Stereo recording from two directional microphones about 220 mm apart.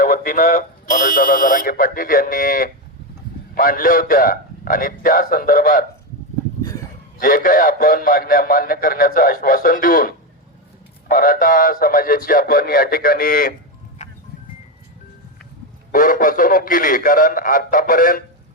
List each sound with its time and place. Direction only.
0.0 s a man's voice: 35° left (ahead or behind)
7.2 s a man's voice: 40° left (ahead or behind)
14.0 s music: 30° left (ahead or behind)
15.9 s a man's voice: 40° left (ahead or behind)